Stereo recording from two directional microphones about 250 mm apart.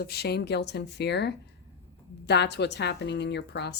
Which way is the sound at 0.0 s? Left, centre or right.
Left.